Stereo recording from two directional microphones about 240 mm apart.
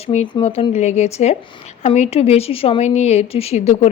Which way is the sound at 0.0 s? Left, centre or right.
Left.